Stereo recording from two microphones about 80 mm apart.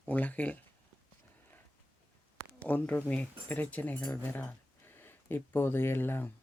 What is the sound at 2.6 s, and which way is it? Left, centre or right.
Speech, centre.